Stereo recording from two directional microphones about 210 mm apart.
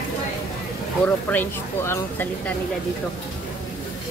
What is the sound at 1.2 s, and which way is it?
Speech, 10° left (ahead or behind).